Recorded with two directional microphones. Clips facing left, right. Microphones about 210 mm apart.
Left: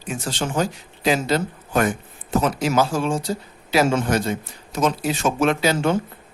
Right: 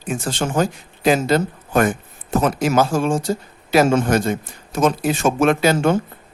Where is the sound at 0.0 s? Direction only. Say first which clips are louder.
Right 3 dB; 50° right (ahead or behind).